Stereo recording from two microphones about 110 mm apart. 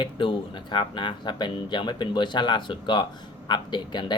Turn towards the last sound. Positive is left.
turn(degrees=40)  # may be behind; listen again after turning